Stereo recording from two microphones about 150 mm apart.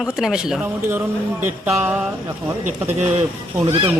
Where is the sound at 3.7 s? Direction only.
35° right (ahead or behind).